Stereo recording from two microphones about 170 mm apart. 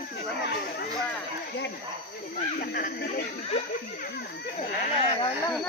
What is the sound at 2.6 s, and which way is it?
Speech, 55° left (ahead or behind).